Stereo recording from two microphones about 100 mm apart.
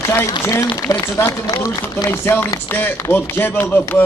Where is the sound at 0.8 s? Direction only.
30° left (ahead or behind).